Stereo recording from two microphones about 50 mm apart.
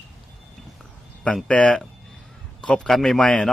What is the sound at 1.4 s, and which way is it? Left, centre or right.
Speech, left.